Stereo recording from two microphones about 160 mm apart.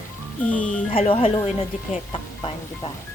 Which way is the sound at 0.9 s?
35° left (ahead or behind).